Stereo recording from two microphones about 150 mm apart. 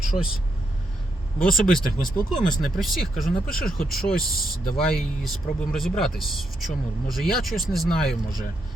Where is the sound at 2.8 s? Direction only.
Centre (ahead or behind).